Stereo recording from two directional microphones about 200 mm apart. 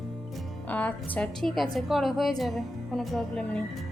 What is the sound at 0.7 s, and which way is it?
A woman's voice, 5° left (ahead or behind).